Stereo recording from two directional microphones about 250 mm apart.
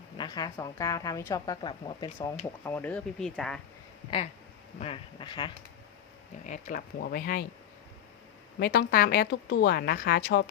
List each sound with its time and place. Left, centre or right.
0.2 s a woman's voice: centre
2.6 s speech: centre
4.8 s speech: left
6.4 s speech: left
8.5 s speech: left